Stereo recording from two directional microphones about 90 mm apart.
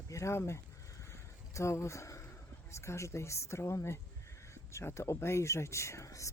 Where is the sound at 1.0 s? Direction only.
35° left (ahead or behind).